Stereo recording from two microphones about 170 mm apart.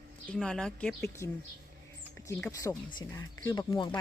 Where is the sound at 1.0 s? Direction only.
15° left (ahead or behind).